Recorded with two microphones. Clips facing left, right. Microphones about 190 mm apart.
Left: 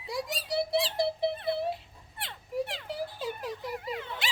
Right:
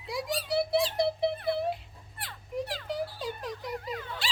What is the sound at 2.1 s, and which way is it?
Children playing, 25° left (ahead or behind).